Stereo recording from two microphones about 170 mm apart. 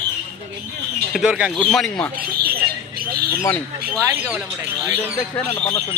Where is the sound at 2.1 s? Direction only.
65° right (ahead or behind).